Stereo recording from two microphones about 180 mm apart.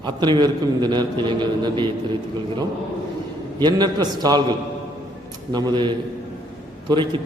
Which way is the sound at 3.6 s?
25° right (ahead or behind).